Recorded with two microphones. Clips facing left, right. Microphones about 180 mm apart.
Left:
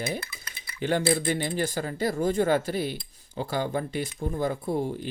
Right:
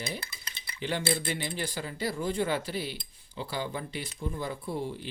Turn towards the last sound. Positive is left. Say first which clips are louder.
# left 6 dB
turn(degrees=45)  # may be behind; listen again after turning